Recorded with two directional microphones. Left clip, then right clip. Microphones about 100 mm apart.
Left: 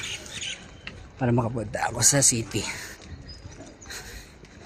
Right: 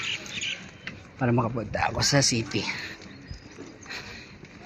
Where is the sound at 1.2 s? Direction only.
90° left.